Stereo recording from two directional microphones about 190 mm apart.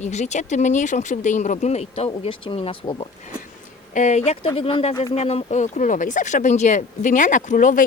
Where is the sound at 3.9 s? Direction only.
35° left (ahead or behind).